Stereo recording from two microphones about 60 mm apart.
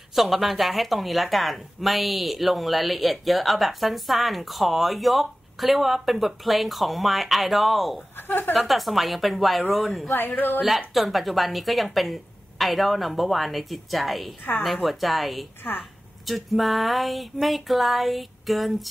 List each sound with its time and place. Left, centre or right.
0.1 s speech: centre
8.2 s a woman's voice: left
8.5 s speech: centre
10.0 s speech: left
10.9 s speech: centre
15.7 s speech: left
16.3 s speech: centre